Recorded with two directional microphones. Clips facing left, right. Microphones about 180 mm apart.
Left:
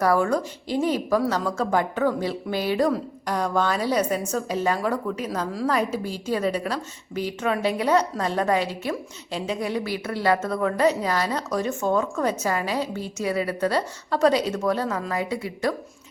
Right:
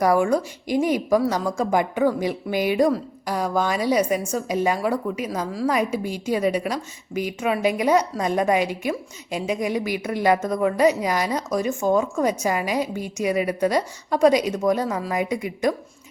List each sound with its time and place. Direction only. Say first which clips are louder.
0.0 s a woman's voice: right 2 dB; 15° right (ahead or behind)